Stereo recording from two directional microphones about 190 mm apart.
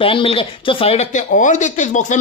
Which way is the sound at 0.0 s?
30° left (ahead or behind).